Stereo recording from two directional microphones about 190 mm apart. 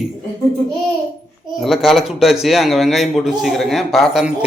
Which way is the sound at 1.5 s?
Centre (ahead or behind).